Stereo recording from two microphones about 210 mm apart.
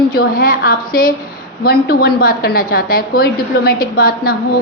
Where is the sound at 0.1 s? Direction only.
45° left (ahead or behind).